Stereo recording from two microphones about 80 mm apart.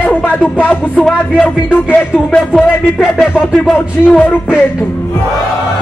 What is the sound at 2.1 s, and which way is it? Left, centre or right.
Speech, centre.